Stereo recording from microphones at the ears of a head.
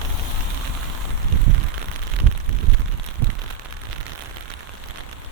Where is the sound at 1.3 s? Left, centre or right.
Right.